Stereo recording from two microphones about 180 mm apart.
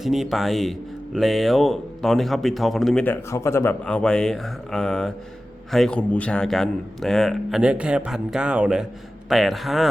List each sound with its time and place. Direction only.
0.0 s speech: centre (ahead or behind)